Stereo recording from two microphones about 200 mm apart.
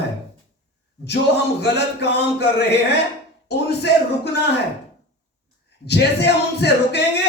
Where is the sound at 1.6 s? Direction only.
55° left (ahead or behind).